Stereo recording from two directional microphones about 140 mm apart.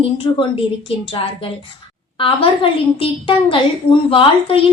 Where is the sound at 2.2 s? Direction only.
40° left (ahead or behind).